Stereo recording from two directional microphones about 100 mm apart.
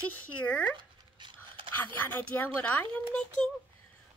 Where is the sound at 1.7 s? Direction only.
20° left (ahead or behind).